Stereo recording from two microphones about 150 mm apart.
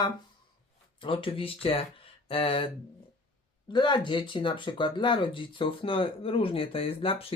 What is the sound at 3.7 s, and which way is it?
Speech, 30° left (ahead or behind).